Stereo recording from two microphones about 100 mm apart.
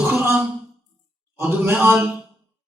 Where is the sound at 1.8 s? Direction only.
15° right (ahead or behind).